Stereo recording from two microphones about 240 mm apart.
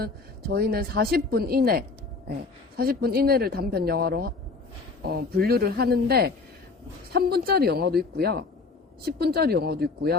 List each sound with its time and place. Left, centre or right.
0.0 s a woman's voice: right